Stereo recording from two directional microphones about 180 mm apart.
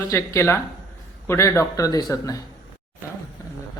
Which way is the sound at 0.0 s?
15° left (ahead or behind).